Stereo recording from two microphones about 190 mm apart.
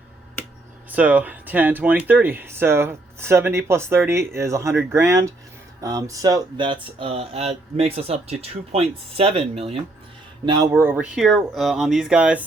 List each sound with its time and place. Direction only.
0.9 s speech: 10° right (ahead or behind); by 9.8 s 30° right (ahead or behind)
10.4 s speech: 20° right (ahead or behind)